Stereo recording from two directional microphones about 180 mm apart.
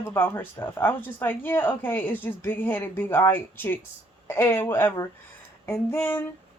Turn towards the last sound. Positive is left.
turn(degrees=10)  # may be behind; listen again after turning